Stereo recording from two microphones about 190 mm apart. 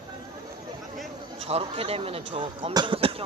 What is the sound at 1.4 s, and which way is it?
Speech, 30° right (ahead or behind).